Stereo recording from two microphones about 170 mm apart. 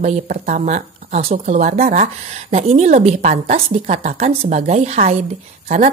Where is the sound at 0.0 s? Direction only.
45° right (ahead or behind).